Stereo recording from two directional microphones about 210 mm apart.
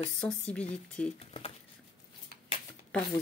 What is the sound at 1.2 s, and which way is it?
Speech, 30° left (ahead or behind).